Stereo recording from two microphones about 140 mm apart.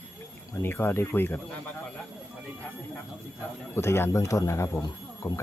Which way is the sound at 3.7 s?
20° left (ahead or behind).